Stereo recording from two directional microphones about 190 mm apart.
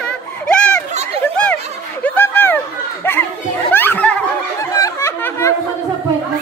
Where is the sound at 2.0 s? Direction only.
10° left (ahead or behind).